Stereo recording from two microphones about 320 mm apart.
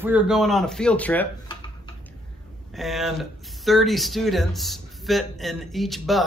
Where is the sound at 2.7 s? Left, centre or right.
Centre.